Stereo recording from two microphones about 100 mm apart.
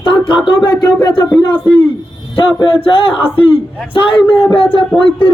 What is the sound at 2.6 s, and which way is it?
Music, 60° left (ahead or behind).